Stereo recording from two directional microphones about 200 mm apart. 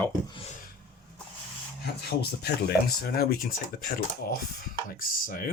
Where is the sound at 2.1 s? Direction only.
50° left (ahead or behind).